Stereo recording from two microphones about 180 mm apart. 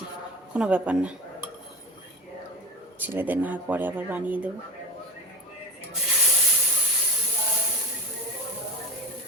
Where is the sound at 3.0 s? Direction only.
10° right (ahead or behind).